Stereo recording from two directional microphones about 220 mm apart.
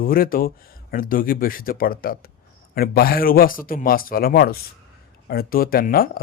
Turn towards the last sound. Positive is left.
turn(degrees=40)  # may be behind; listen again after turning